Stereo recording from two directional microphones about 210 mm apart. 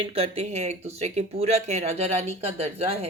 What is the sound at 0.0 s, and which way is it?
Speech, 25° right (ahead or behind).